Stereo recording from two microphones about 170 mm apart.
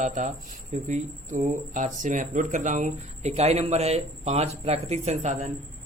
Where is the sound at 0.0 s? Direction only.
45° right (ahead or behind).